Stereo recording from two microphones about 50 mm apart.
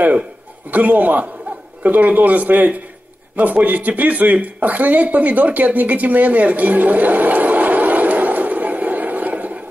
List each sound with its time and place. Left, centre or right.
0.7 s a man's voice: right